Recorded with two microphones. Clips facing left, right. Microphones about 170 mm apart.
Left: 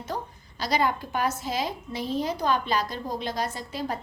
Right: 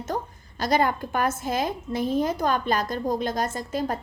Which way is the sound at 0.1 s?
45° right (ahead or behind).